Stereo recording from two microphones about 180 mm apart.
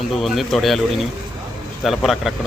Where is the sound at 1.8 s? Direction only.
Centre (ahead or behind).